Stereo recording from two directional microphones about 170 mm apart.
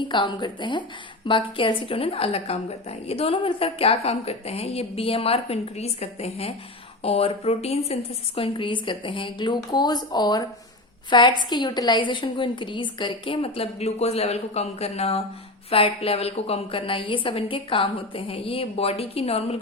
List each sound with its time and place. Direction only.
0.1 s a woman's voice: 30° left (ahead or behind)